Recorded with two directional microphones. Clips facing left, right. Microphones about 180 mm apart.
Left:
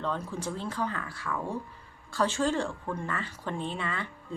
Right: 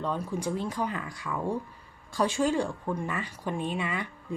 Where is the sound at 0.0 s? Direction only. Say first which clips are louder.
Right 2 dB; 10° right (ahead or behind).